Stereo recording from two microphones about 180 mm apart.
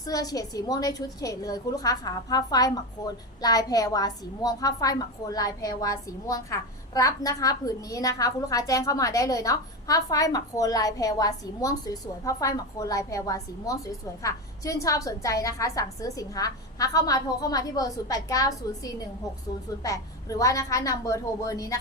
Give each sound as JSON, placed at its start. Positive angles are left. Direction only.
{"t": 0.0, "sound": "a woman's voice", "side_deg": 20}